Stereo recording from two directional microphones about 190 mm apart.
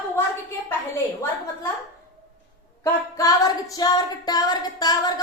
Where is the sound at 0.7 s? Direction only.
10° left (ahead or behind).